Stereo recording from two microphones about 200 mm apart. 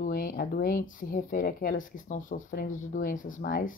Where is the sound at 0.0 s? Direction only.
45° left (ahead or behind).